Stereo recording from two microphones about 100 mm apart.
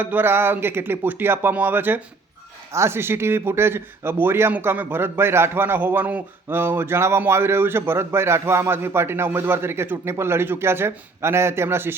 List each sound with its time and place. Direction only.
0.0 s speech: 20° right (ahead or behind)